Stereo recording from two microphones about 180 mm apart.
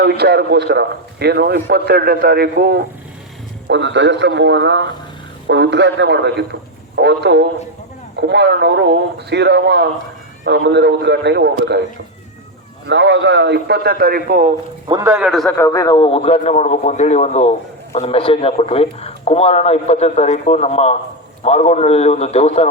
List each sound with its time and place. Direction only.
0.0 s a man's voice: 65° right (ahead or behind)
3.7 s a man's voice: 80° right
12.9 s speech: 80° right; by 14.5 s 50° right (ahead or behind)
15.0 s a man's voice: 10° right (ahead or behind)
15.5 s a man's voice: 15° left (ahead or behind); by 22.6 s 35° left (ahead or behind)